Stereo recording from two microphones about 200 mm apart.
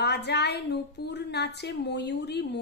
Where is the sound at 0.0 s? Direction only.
55° left (ahead or behind).